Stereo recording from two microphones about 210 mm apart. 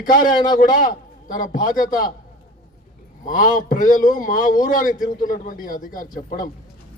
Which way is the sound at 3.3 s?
40° left (ahead or behind).